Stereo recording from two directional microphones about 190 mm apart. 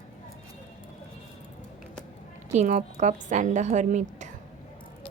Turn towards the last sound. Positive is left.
turn(degrees=-40)  # may be behind; listen again after turning